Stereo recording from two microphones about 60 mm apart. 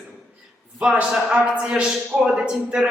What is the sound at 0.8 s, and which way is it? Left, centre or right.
A woman's voice, right.